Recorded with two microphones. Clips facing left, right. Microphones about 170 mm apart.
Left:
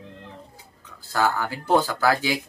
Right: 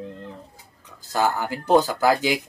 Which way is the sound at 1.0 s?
15° right (ahead or behind).